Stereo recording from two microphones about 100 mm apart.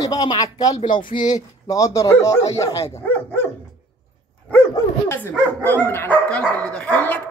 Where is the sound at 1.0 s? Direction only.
50° left (ahead or behind).